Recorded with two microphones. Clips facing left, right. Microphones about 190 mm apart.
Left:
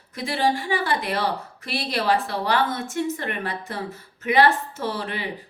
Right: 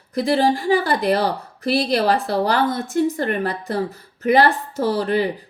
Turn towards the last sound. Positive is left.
turn(degrees=-40)  # may be behind; listen again after turning